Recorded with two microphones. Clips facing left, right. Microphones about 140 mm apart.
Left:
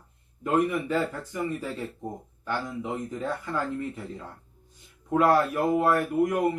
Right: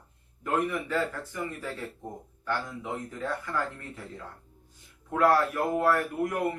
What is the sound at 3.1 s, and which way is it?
Speech, 20° left (ahead or behind).